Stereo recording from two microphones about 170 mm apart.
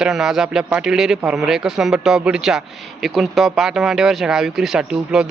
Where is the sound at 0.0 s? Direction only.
Centre (ahead or behind).